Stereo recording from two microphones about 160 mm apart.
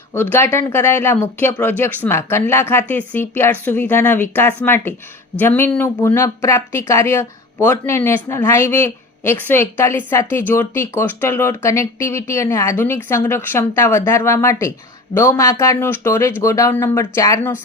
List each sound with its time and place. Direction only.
0.1 s speech: 15° left (ahead or behind)